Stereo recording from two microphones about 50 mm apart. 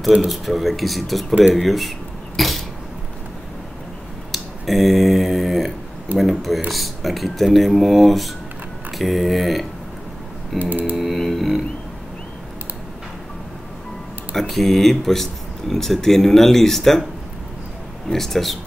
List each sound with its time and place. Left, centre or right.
0.3 s speech: centre
1.5 s cutlery: centre
4.3 s a sound: centre
6.1 s speech: centre
10.6 s computer keyboard: right
11.0 s music: centre
14.3 s speech: centre
18.1 s speech: centre